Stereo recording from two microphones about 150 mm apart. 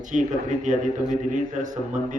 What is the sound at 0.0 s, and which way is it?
A man's voice, 55° right (ahead or behind).